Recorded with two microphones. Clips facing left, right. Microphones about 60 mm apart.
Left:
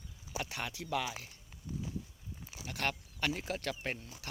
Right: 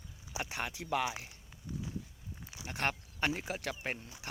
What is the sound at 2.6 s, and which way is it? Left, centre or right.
Speech, right.